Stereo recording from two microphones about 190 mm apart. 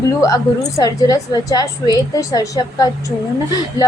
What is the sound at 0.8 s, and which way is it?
A woman's voice, 20° left (ahead or behind).